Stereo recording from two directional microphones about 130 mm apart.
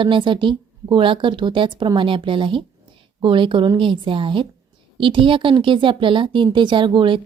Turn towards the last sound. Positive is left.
turn(degrees=-40)  # may be behind; listen again after turning